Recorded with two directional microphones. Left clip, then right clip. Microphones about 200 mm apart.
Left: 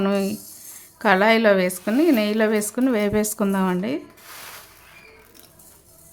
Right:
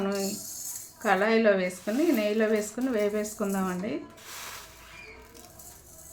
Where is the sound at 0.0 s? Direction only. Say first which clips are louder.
Left 7 dB; 55° left (ahead or behind).